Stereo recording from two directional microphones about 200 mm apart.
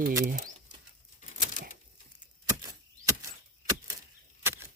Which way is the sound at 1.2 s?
40° left (ahead or behind).